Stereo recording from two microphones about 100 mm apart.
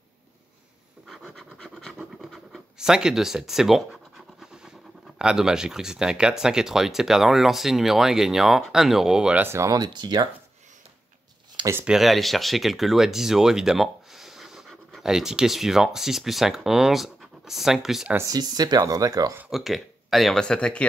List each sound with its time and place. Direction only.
1.0 s scratch: centre (ahead or behind)
5.2 s speech: 5° right (ahead or behind)
9.4 s speech: 25° right (ahead or behind)
9.7 s speech: 45° right (ahead or behind)
11.8 s speech: 5° right (ahead or behind)
18.1 s speech: 35° right (ahead or behind)
19.5 s speech: centre (ahead or behind)